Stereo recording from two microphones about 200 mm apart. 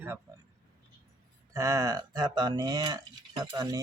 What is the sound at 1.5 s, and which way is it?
Speech, 15° right (ahead or behind).